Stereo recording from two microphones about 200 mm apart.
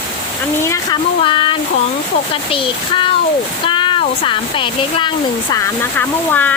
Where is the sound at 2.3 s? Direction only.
25° left (ahead or behind).